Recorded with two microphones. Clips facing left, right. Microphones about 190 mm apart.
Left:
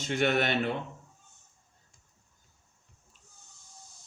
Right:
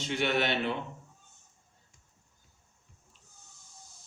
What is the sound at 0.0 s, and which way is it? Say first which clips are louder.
Speech: left 2 dB; 50° left (ahead or behind).